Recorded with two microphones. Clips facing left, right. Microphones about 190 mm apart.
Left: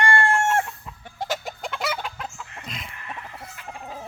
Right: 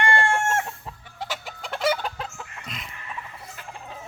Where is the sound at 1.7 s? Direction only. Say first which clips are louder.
Right 7 dB; 45° right (ahead or behind).